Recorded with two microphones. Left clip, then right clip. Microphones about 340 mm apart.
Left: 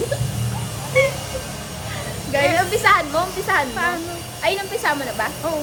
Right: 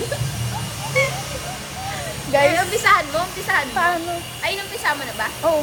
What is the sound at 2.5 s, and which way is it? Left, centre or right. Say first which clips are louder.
Speech: even; centre.